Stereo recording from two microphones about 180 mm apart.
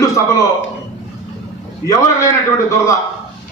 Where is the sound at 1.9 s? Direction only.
15° left (ahead or behind).